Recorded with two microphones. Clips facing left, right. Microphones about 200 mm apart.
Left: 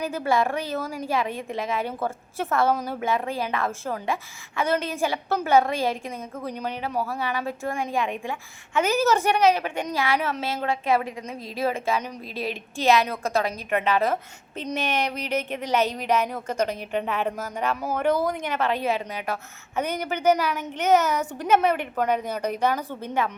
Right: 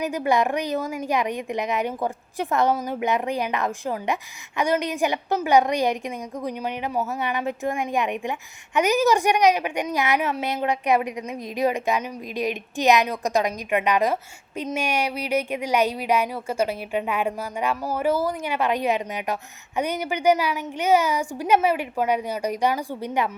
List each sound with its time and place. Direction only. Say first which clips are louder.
0.0 s a woman's voice: right 2 dB; 15° right (ahead or behind)